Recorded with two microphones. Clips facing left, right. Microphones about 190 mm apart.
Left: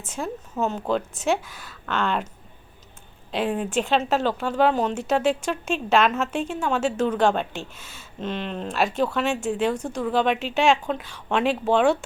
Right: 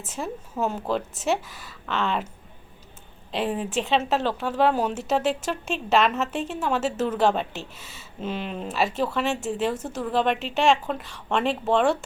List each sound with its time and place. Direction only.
0.0 s speech: 5° right (ahead or behind)
3.3 s speech: centre (ahead or behind)